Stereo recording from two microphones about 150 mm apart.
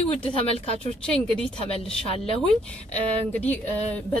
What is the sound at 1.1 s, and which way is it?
Speech, 5° left (ahead or behind).